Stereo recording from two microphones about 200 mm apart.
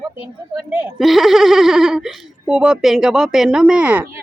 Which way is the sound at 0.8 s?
Centre (ahead or behind).